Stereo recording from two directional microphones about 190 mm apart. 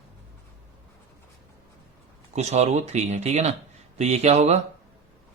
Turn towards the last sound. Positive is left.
turn(degrees=-35)  # may be behind; listen again after turning